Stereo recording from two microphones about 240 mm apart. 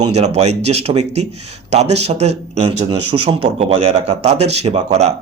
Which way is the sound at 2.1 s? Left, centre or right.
Right.